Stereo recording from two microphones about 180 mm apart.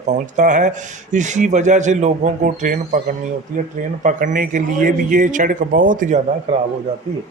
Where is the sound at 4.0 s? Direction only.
45° right (ahead or behind).